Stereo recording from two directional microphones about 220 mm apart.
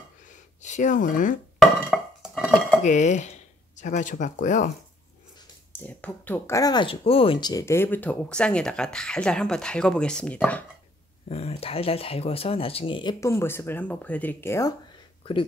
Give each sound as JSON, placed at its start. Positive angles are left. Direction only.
{"t": 0.6, "sound": "speech", "side_deg": 35}
{"t": 1.6, "sound": "a sound", "side_deg": 0}
{"t": 2.8, "sound": "speech", "side_deg": 35}
{"t": 5.7, "sound": "speech", "side_deg": 10}
{"t": 11.2, "sound": "speech", "side_deg": 25}